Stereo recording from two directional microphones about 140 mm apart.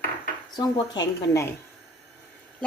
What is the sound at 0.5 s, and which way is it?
Speech, 30° left (ahead or behind).